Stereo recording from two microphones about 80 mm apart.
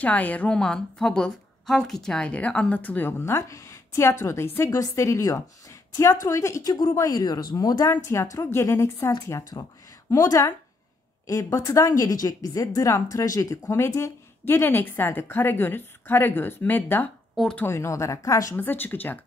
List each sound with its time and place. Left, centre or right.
0.0 s a woman's voice: centre; by 6.7 s left
6.7 s speech: left
7.9 s a woman's voice: left
17.6 s a woman's voice: left
18.6 s a woman's voice: left